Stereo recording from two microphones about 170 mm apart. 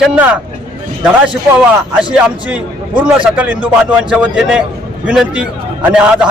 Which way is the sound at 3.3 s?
10° right (ahead or behind).